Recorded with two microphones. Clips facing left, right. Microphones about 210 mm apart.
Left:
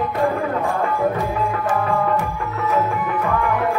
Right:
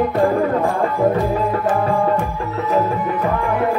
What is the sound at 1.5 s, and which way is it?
Music, 30° right (ahead or behind).